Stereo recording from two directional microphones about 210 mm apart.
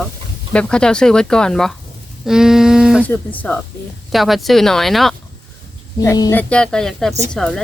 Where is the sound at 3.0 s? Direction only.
5° left (ahead or behind).